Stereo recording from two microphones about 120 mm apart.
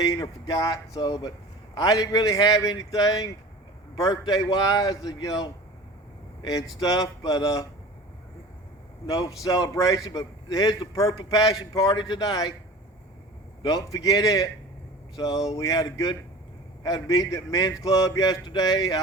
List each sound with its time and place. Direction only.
0.0 s a man's voice: 35° left (ahead or behind)
9.0 s a man's voice: 30° left (ahead or behind)
13.6 s a man's voice: 30° left (ahead or behind)